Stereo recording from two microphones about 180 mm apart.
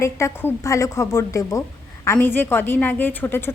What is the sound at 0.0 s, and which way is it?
A woman's voice, 15° left (ahead or behind).